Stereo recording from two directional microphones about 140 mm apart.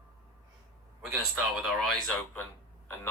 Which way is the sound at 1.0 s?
10° right (ahead or behind).